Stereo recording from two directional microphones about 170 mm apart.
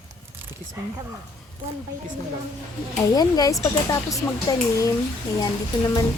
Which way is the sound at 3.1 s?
25° left (ahead or behind).